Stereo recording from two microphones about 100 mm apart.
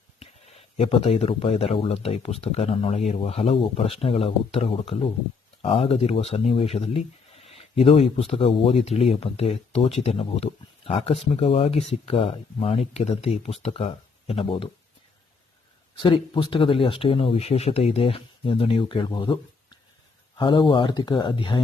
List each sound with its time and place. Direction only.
0.2 s speech: 75° left (ahead or behind)
16.0 s speech: 55° left (ahead or behind)
20.4 s speech: 50° left (ahead or behind)